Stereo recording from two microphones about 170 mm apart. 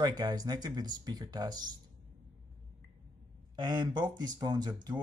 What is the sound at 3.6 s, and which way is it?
Speech, 25° right (ahead or behind).